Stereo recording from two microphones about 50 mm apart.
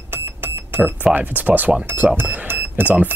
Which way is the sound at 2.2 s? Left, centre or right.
Right.